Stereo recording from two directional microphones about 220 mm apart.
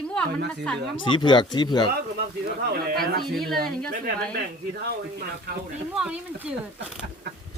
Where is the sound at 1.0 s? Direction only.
20° left (ahead or behind).